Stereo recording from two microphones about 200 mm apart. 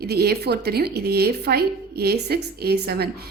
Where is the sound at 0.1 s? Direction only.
50° right (ahead or behind).